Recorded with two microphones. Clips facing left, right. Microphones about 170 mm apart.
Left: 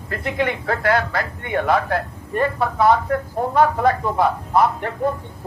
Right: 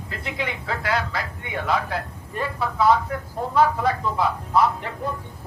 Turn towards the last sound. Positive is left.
turn(degrees=55)  # may be behind; listen again after turning